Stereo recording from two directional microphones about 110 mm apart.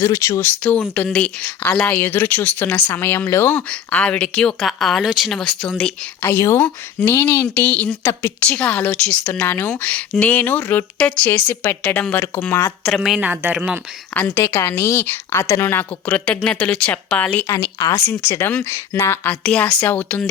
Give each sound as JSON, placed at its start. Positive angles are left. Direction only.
{"t": 0.0, "sound": "a woman's voice", "side_deg": 25}
{"t": 3.7, "sound": "a woman's voice", "side_deg": 10}
{"t": 6.2, "sound": "a woman's voice", "side_deg": 25}
{"t": 13.0, "sound": "speech", "side_deg": -5}
{"t": 14.1, "sound": "a woman's voice", "side_deg": 15}